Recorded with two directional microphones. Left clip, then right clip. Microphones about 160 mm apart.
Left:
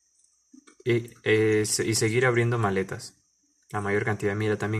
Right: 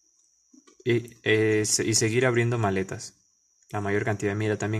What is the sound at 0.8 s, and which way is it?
Speech, 30° right (ahead or behind).